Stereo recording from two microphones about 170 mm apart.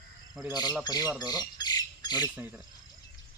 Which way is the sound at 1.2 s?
25° left (ahead or behind).